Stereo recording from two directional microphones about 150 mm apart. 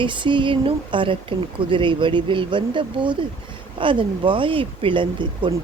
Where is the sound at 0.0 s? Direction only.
30° right (ahead or behind).